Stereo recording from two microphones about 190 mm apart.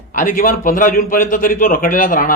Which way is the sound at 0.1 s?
45° left (ahead or behind).